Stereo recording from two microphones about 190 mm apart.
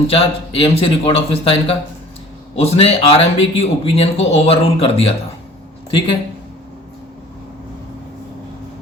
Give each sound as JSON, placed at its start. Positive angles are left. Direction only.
{"t": 0.1, "sound": "speech", "side_deg": 30}